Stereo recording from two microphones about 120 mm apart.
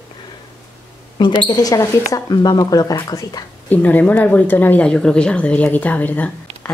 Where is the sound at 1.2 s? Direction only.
40° left (ahead or behind).